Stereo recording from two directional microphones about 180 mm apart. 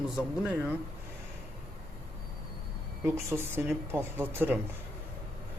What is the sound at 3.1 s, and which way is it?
Speech, 15° right (ahead or behind).